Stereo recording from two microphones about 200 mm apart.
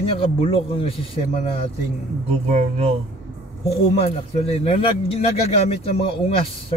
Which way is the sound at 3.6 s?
30° left (ahead or behind).